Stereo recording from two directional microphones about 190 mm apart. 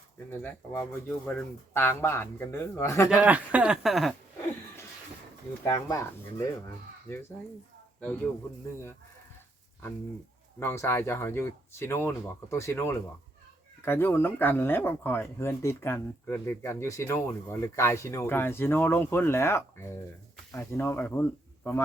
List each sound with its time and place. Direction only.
0.3 s speech: 10° left (ahead or behind)
3.1 s speech: 5° right (ahead or behind)
5.6 s speech: 20° left (ahead or behind)
10.6 s speech: 15° left (ahead or behind)